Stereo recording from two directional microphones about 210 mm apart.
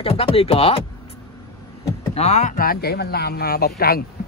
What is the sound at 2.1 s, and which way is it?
Speech, 30° left (ahead or behind).